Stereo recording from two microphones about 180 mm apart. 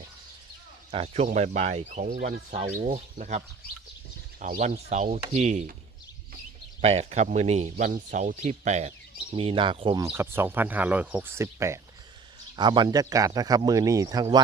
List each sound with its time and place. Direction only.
0.9 s speech: 30° right (ahead or behind)
4.5 s speech: 40° right (ahead or behind)
6.8 s speech: 35° right (ahead or behind)
10.0 s speech: 15° right (ahead or behind)